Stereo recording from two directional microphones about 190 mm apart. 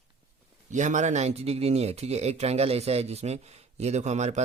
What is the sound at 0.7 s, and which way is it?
Speech, 40° right (ahead or behind).